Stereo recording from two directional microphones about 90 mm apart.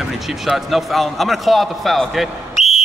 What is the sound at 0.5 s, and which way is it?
Speech, centre (ahead or behind).